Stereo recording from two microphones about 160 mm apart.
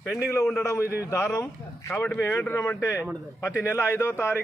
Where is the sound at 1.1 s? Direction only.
15° left (ahead or behind).